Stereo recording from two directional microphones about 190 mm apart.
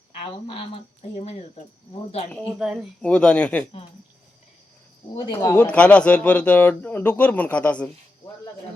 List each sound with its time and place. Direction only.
0.2 s speech: 30° left (ahead or behind)
2.6 s speech: 5° right (ahead or behind)
5.1 s speech: 25° left (ahead or behind)
5.7 s speech: 5° left (ahead or behind)